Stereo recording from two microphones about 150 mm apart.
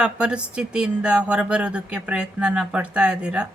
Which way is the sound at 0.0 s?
5° right (ahead or behind).